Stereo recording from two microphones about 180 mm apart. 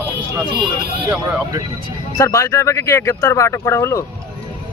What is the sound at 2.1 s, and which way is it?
Speech, 15° left (ahead or behind).